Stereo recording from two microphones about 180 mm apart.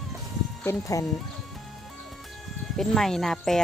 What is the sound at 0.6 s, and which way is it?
Speech, 15° left (ahead or behind).